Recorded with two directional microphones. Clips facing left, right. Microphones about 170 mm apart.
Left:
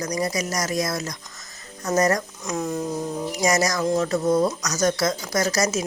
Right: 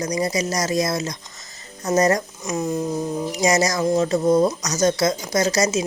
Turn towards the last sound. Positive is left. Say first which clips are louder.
# right 3 dB
turn(degrees=-20)  # may be behind; listen again after turning